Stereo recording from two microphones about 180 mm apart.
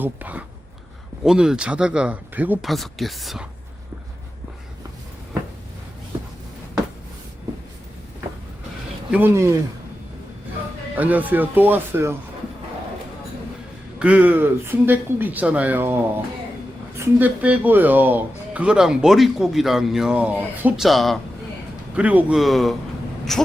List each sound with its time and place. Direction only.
0.0 s speech: 10° right (ahead or behind)
6.1 s a sound: 25° right (ahead or behind)
9.1 s speech: 15° right (ahead or behind)
10.9 s speech: 10° right (ahead or behind)
14.0 s speech: 10° right (ahead or behind)